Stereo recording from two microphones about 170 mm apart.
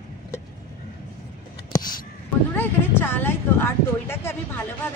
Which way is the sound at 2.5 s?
10° left (ahead or behind).